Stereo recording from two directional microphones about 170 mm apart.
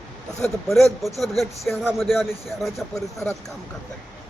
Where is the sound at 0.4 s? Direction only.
Centre (ahead or behind).